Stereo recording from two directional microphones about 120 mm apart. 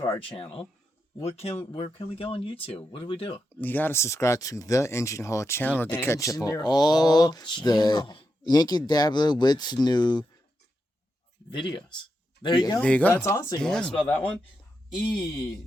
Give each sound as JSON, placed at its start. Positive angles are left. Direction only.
{"t": 0.3, "sound": "speech", "side_deg": 50}
{"t": 1.7, "sound": "speech", "side_deg": 45}
{"t": 3.3, "sound": "speech", "side_deg": 15}
{"t": 11.5, "sound": "speech", "side_deg": 40}
{"t": 12.8, "sound": "speech", "side_deg": 10}
{"t": 13.2, "sound": "speech", "side_deg": 25}
{"t": 13.6, "sound": "speech", "side_deg": 5}
{"t": 15.2, "sound": "speech", "side_deg": 30}